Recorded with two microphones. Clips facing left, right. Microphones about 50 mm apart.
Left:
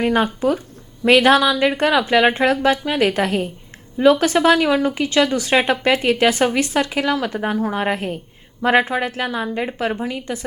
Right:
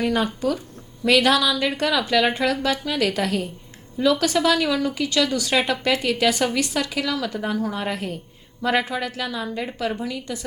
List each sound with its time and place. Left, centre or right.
0.0 s a woman's voice: left